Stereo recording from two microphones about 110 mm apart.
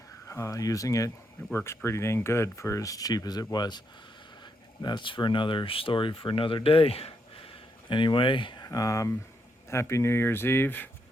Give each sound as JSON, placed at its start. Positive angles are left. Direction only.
{"t": 0.3, "sound": "speech", "side_deg": 30}
{"t": 8.6, "sound": "speech", "side_deg": 30}